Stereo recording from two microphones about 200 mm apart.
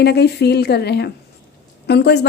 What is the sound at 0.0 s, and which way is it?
A woman's voice, 55° left (ahead or behind).